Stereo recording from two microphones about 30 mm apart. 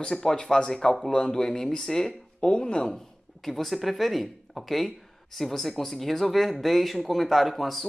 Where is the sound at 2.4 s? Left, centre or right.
Left.